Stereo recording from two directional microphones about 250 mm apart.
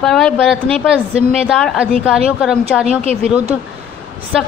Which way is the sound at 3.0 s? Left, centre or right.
Right.